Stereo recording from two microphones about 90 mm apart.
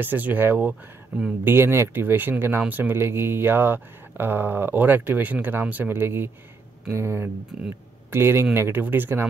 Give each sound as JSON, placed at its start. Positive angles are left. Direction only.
{"t": 0.0, "sound": "speech", "side_deg": -20}
{"t": 1.4, "sound": "speech", "side_deg": -25}